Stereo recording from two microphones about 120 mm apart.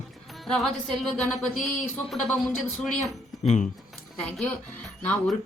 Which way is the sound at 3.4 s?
70° left (ahead or behind).